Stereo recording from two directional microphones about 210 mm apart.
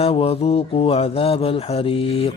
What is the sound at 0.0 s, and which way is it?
Speech, 25° left (ahead or behind).